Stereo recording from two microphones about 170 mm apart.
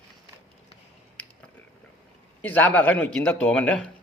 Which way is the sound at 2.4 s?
10° left (ahead or behind).